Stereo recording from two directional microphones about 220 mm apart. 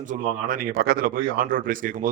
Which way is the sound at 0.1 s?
40° right (ahead or behind).